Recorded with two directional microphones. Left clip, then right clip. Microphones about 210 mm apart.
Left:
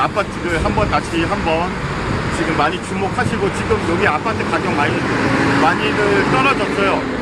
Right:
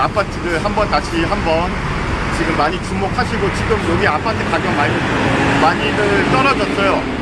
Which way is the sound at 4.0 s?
Centre (ahead or behind).